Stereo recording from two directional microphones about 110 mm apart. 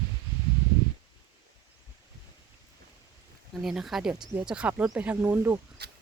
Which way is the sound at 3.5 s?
5° right (ahead or behind).